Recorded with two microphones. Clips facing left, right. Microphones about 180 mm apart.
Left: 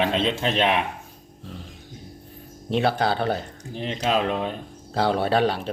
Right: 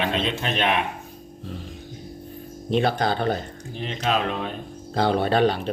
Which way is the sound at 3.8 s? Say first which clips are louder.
Left 1 dB; 30° left (ahead or behind).